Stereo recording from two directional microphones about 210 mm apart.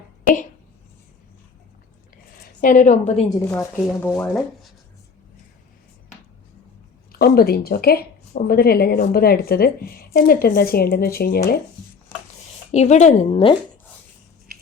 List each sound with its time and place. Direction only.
2.6 s speech: 40° left (ahead or behind)
3.4 s speech: 5° left (ahead or behind)
7.1 s a woman's voice: 45° left (ahead or behind)
12.7 s speech: 35° left (ahead or behind)